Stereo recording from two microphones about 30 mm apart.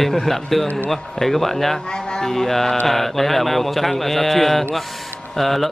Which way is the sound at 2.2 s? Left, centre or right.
Centre.